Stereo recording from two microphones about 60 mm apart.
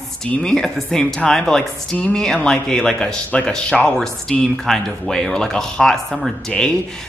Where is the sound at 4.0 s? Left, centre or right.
Centre.